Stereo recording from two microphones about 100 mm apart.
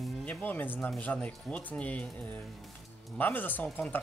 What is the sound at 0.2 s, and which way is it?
Speech, 15° left (ahead or behind).